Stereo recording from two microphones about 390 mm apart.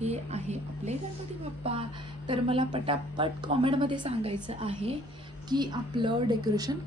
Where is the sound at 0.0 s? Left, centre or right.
Centre.